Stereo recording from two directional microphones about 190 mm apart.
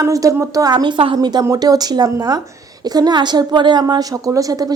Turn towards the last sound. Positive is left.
turn(degrees=-20)  # may be behind; listen again after turning